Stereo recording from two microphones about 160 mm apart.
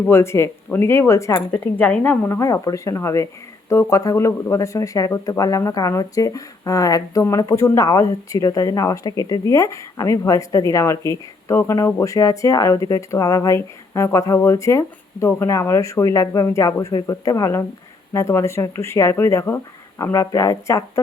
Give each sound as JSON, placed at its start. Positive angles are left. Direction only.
{"t": 0.0, "sound": "speech", "side_deg": 15}